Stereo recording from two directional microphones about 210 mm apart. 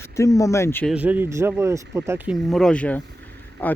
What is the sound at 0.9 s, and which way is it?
Speech, 5° right (ahead or behind).